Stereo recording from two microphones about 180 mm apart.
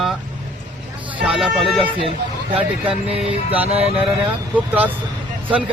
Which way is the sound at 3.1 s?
35° right (ahead or behind).